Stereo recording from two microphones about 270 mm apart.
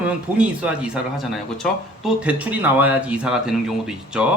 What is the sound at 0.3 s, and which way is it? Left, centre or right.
A man's voice, centre.